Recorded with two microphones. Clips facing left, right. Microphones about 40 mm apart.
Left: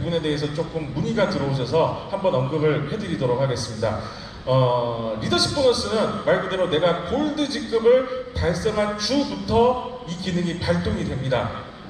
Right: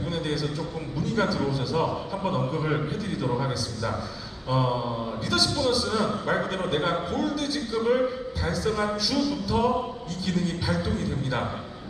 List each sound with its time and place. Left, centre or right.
0.0 s a man's voice: left
1.0 s a man's voice: centre